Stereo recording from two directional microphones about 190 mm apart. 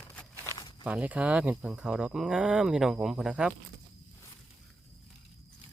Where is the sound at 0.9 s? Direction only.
5° right (ahead or behind).